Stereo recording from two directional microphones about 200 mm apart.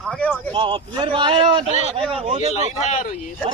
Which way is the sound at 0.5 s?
25° right (ahead or behind).